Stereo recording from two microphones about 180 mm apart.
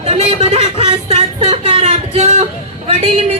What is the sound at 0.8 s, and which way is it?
Music, 35° right (ahead or behind).